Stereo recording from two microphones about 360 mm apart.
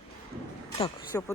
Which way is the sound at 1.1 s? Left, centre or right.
Centre.